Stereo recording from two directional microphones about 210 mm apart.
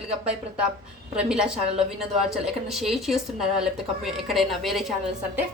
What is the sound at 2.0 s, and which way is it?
Speech, centre (ahead or behind).